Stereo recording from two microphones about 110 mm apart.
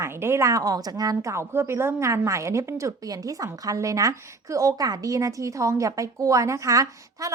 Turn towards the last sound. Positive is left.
turn(degrees=-30)  # may be behind; listen again after turning